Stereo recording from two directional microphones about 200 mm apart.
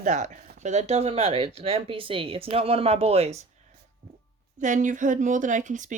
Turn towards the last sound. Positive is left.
turn(degrees=-40)  # may be behind; listen again after turning